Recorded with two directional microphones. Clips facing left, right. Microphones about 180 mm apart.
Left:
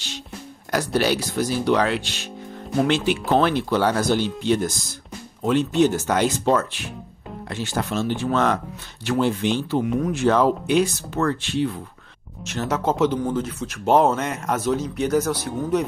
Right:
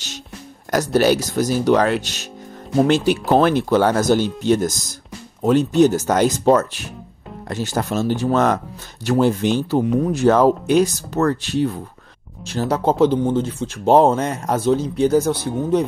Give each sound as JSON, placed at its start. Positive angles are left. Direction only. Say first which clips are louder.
{"t": 0.7, "sound": "speech", "louder": "right 5 dB", "side_deg": -45}